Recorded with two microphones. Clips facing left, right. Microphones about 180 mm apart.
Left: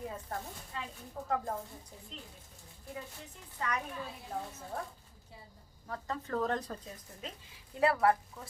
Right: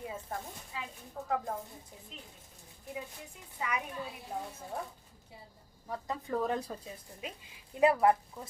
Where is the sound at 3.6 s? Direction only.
10° right (ahead or behind).